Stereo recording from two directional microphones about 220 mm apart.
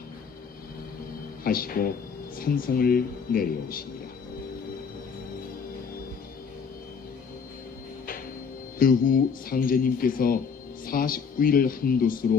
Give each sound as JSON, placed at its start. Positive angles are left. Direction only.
{"t": 1.5, "sound": "speech", "side_deg": 40}
{"t": 8.8, "sound": "speech", "side_deg": 40}